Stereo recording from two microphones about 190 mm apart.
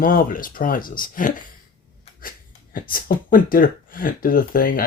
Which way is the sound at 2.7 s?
50° left (ahead or behind).